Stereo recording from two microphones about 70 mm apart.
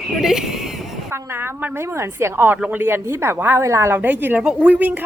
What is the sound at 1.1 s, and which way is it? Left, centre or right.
A woman's voice, right.